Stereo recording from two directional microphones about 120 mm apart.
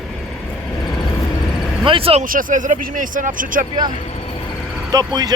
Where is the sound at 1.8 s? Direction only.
50° right (ahead or behind).